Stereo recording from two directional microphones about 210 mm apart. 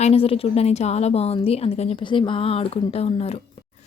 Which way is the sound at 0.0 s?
30° left (ahead or behind).